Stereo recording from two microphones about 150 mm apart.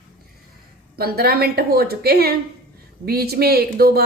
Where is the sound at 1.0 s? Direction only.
90° right.